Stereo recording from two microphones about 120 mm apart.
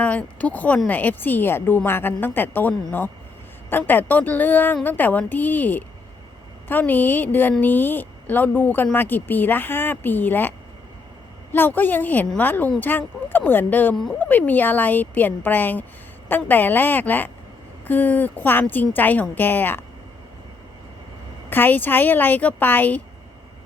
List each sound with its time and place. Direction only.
0.0 s speech: 10° left (ahead or behind)
11.5 s speech: 15° left (ahead or behind)
13.9 s speech: centre (ahead or behind)
14.2 s speech: 15° left (ahead or behind)
21.5 s speech: 15° left (ahead or behind)